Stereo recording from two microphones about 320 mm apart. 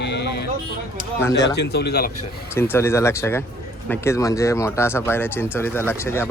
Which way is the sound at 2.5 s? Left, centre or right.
Centre.